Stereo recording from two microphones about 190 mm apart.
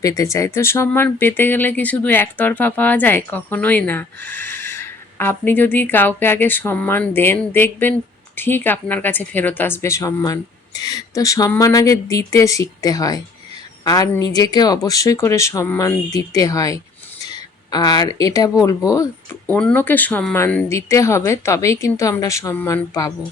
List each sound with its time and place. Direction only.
0.0 s speech: 15° left (ahead or behind)